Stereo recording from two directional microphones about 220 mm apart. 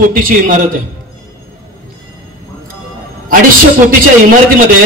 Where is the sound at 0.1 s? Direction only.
40° right (ahead or behind).